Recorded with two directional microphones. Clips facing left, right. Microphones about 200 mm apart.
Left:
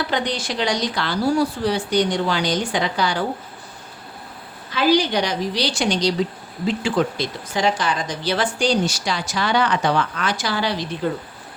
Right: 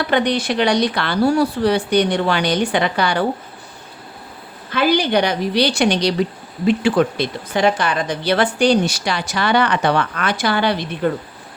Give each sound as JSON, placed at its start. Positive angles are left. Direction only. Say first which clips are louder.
{"t": 0.1, "sound": "speech", "louder": "right 6 dB", "side_deg": -60}
{"t": 4.7, "sound": "speech", "louder": "right 2 dB", "side_deg": -55}